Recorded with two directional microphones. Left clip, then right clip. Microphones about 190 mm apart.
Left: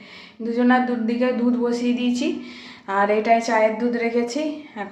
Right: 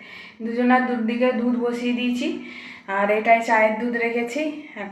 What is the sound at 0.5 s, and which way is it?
A woman's voice, 10° left (ahead or behind).